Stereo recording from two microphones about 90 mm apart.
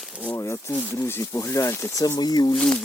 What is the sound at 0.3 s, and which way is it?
Speech, 30° left (ahead or behind).